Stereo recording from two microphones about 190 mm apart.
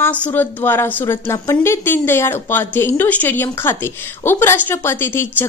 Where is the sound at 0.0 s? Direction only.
10° left (ahead or behind).